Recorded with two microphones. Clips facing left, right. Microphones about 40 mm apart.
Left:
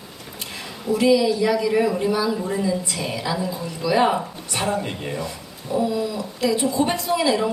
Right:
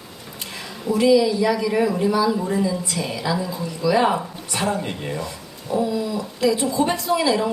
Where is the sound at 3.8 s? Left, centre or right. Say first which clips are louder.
Even; centre.